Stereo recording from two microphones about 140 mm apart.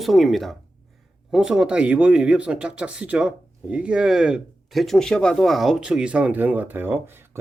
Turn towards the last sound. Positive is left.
turn(degrees=-15)  # may be behind; listen again after turning